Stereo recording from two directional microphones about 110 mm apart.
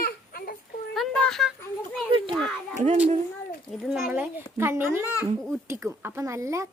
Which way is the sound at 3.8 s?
5° right (ahead or behind).